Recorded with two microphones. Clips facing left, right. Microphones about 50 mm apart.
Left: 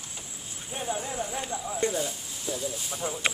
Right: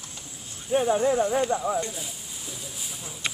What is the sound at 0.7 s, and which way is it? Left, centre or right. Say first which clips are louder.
Speech: right 11 dB; centre.